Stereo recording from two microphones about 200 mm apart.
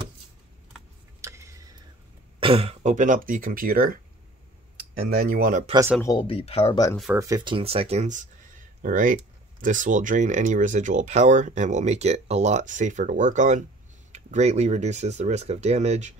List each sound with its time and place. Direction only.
1.2 s tick-tock: 15° right (ahead or behind)
2.4 s speech: 30° right (ahead or behind); by 3.9 s 45° right (ahead or behind)
5.0 s speech: 50° right (ahead or behind)
6.0 s speech: 25° left (ahead or behind)
7.2 s speech: 15° right (ahead or behind); by 16.2 s 35° right (ahead or behind)